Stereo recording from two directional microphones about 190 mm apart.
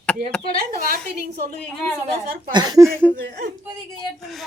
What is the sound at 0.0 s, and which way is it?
Speech, 5° left (ahead or behind).